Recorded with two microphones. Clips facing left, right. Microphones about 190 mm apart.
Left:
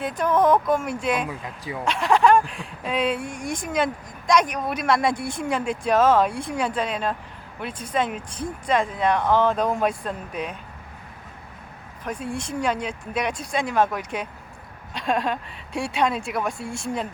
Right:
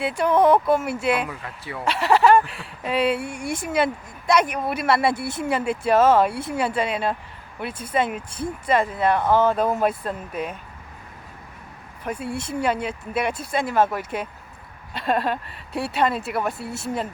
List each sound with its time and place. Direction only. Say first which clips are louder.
0.0 s speech: right 2 dB; 10° right (ahead or behind)
1.3 s speech: left 2 dB; 15° left (ahead or behind)
1.8 s speech: right 1 dB; 5° right (ahead or behind)
12.0 s speech: right 1 dB; 10° right (ahead or behind)